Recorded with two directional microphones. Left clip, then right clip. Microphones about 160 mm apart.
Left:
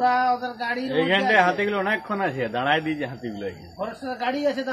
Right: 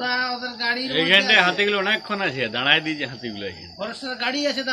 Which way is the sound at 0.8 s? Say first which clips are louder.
Right 4 dB; 35° left (ahead or behind).